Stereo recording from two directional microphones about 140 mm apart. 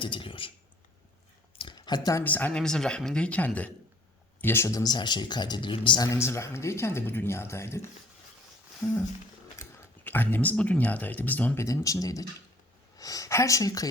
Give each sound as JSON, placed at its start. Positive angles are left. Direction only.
{"t": 0.0, "sound": "speech", "side_deg": 35}
{"t": 1.5, "sound": "a sound", "side_deg": 35}
{"t": 2.2, "sound": "speech", "side_deg": 10}
{"t": 9.6, "sound": "speech", "side_deg": 15}